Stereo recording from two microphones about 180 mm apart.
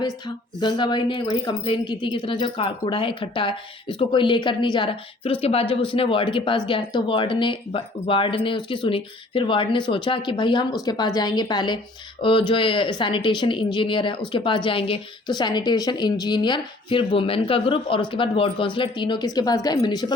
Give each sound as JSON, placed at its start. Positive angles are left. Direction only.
{"t": 0.6, "sound": "speech", "side_deg": 25}